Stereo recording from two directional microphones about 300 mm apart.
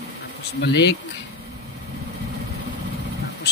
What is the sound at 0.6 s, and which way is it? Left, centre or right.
Speech, left.